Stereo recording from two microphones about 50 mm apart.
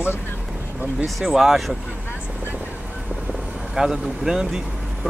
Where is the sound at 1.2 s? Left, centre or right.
Centre.